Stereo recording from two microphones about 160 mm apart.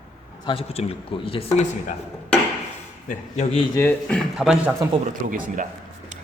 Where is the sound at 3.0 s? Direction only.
40° left (ahead or behind).